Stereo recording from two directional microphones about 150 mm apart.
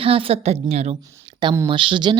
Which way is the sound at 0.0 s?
40° right (ahead or behind).